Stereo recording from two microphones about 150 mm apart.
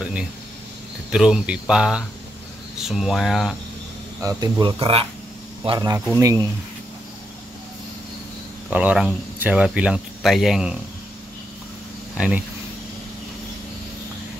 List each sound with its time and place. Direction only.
1.1 s speech: 5° right (ahead or behind)
4.2 s speech: 25° right (ahead or behind)
8.6 s speech: 10° right (ahead or behind)
12.2 s speech: 5° right (ahead or behind)